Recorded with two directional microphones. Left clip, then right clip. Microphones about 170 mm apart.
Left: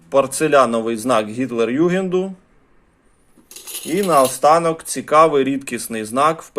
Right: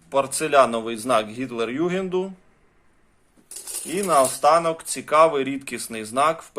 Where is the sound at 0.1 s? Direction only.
20° left (ahead or behind).